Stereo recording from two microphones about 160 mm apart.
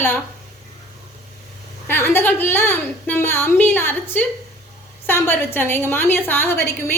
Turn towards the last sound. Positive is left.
turn(degrees=15)  # may be behind; listen again after turning